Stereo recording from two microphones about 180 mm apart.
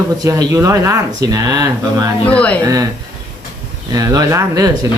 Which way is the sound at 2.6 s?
20° right (ahead or behind).